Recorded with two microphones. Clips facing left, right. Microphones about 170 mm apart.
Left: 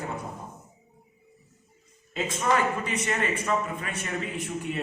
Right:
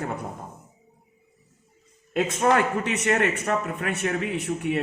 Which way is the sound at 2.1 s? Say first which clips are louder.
Right 5 dB; 55° right (ahead or behind).